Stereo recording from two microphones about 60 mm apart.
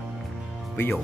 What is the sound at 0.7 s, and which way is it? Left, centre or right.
Speech, left.